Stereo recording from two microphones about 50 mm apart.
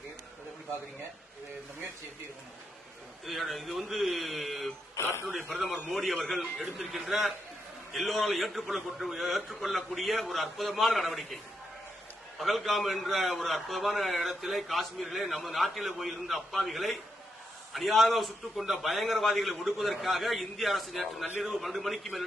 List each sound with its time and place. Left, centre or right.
3.2 s a man's voice: centre
4.9 s speech: left
5.5 s a man's voice: centre
12.4 s a man's voice: centre